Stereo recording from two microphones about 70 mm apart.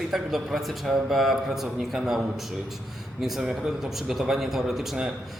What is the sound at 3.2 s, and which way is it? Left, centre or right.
Speech, centre.